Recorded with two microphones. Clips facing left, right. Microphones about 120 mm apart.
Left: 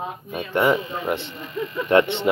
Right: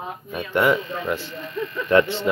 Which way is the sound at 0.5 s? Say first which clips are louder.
Even; 30° left (ahead or behind).